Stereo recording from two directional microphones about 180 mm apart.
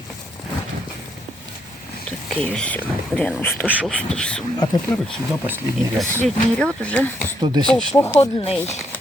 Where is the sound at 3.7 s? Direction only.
10° right (ahead or behind).